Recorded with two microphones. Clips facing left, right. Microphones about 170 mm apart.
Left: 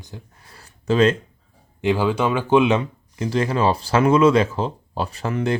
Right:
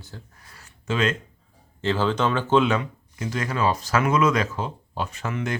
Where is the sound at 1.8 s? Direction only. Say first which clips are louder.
Left 3 dB; 15° left (ahead or behind).